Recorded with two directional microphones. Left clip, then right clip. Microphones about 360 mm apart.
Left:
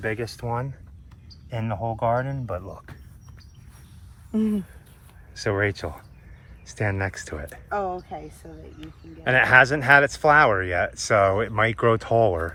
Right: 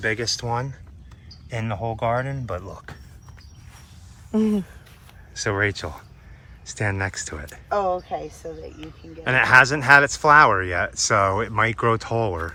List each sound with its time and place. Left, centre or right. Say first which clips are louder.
0.0 s speech: right 5 dB; centre
4.3 s speech: right 4 dB; right
5.3 s speech: right 1 dB; centre
7.8 s speech: right 6 dB; centre
8.8 s speech: left 2 dB; centre